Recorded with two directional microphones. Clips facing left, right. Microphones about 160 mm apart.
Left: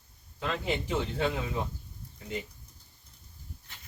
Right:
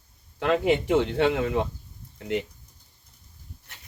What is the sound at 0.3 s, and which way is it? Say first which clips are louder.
Speech: right 10 dB; 70° right (ahead or behind).